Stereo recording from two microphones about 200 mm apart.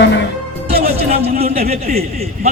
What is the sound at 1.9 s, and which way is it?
Speech, 50° right (ahead or behind).